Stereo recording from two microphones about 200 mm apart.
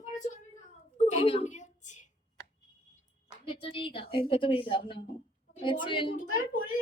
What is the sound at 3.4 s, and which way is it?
A woman's voice, 25° left (ahead or behind).